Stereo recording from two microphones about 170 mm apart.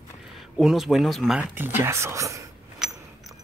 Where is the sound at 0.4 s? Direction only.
Centre (ahead or behind).